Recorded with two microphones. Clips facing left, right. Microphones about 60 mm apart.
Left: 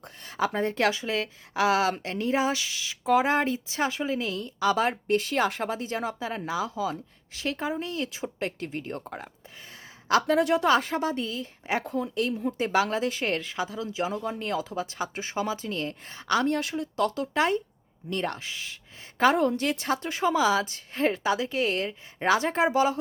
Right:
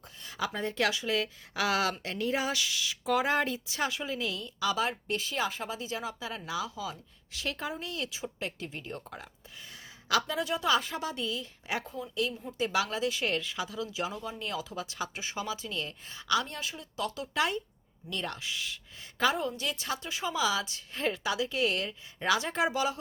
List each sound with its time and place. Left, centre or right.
0.3 s speech: left
10.2 s a woman's voice: left
11.8 s a woman's voice: left
12.0 s speech: left
14.1 s speech: left
17.3 s speech: left
19.2 s speech: left